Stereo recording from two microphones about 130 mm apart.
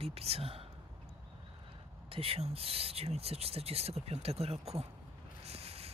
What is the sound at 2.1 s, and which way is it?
Speech, 45° right (ahead or behind).